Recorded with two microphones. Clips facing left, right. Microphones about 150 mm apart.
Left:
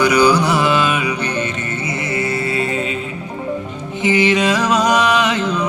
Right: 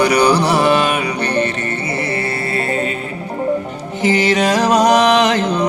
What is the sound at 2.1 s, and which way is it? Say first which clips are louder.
Music: left 1 dB; 35° right (ahead or behind).